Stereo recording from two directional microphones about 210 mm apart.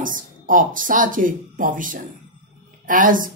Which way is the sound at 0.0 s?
40° right (ahead or behind).